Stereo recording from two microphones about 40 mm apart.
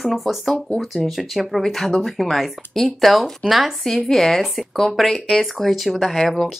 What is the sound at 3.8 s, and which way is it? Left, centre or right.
Speech, centre.